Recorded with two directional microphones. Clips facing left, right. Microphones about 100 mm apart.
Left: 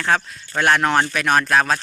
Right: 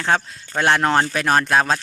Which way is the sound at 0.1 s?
30° right (ahead or behind).